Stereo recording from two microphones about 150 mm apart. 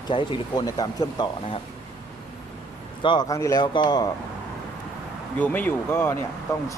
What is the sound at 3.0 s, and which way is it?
Speech, 30° left (ahead or behind).